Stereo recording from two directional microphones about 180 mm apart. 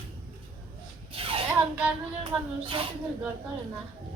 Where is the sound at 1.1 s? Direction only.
30° right (ahead or behind).